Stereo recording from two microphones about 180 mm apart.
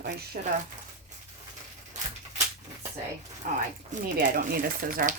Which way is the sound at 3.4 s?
50° right (ahead or behind).